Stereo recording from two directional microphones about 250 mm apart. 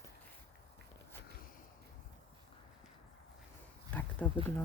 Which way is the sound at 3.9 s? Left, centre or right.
Centre.